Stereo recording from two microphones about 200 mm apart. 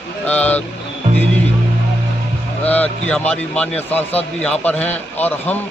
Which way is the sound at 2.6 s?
10° left (ahead or behind).